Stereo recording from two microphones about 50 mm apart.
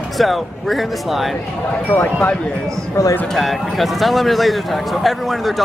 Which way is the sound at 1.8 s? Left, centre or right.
Left.